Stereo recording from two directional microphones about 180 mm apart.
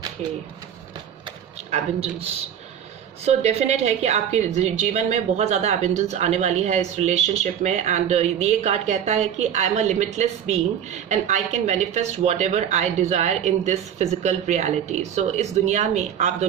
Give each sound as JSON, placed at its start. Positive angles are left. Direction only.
{"t": 0.2, "sound": "a woman's voice", "side_deg": -40}
{"t": 3.2, "sound": "a woman's voice", "side_deg": -35}